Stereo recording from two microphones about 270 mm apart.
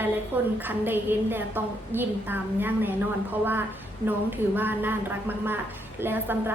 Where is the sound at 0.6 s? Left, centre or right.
Centre.